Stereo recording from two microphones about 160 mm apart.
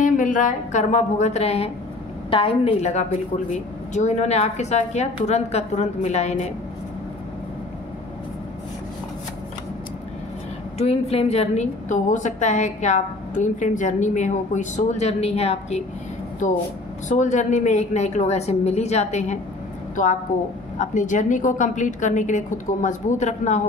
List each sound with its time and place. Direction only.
0.0 s a woman's voice: 55° left (ahead or behind)
10.8 s a woman's voice: 40° left (ahead or behind)
16.4 s a woman's voice: 50° left (ahead or behind)